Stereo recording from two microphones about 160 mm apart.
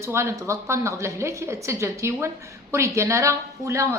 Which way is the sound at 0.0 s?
15° right (ahead or behind).